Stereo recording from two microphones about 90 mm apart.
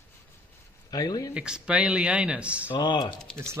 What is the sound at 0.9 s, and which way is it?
Speech, 45° left (ahead or behind).